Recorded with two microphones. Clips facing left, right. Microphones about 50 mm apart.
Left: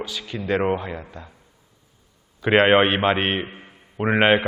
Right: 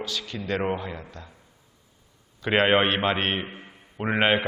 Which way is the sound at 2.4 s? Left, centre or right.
Centre.